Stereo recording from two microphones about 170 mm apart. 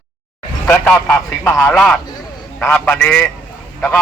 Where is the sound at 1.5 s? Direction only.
15° left (ahead or behind).